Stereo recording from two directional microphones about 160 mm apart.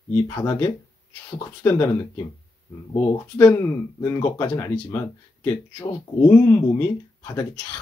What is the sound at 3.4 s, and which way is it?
Speech, 15° left (ahead or behind).